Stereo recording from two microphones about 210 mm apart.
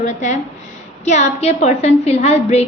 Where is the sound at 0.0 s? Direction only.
35° left (ahead or behind).